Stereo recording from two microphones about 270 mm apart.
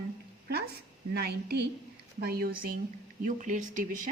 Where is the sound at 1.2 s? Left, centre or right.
Right.